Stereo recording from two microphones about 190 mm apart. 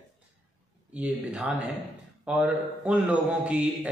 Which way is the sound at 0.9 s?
5° right (ahead or behind).